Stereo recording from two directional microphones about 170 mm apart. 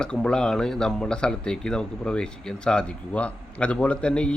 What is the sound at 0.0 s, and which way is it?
Speech, 5° left (ahead or behind).